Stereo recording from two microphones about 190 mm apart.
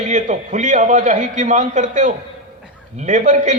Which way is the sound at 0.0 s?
40° right (ahead or behind).